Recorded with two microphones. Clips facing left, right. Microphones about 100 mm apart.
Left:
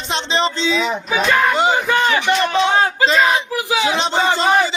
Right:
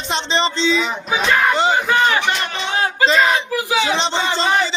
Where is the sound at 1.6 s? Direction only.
20° left (ahead or behind).